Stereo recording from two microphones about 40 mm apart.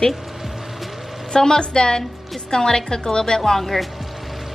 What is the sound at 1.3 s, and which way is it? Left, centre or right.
A woman's voice, centre.